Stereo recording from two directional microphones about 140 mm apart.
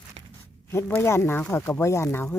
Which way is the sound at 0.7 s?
15° left (ahead or behind).